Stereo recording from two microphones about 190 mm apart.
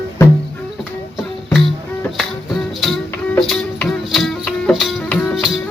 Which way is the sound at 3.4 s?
Centre (ahead or behind).